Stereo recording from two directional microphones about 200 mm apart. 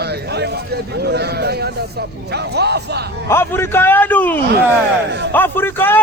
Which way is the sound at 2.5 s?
55° right (ahead or behind).